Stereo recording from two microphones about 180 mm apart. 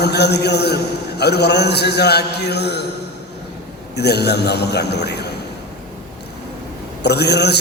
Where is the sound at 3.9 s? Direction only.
65° left (ahead or behind).